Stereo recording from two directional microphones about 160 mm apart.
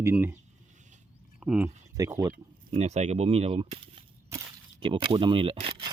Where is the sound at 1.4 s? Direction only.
5° right (ahead or behind).